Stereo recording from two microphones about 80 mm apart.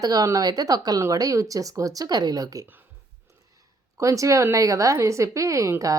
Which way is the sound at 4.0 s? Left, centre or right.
Right.